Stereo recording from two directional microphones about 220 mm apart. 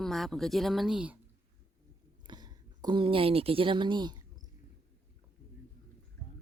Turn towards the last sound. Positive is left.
turn(degrees=-20)  # may be behind; listen again after turning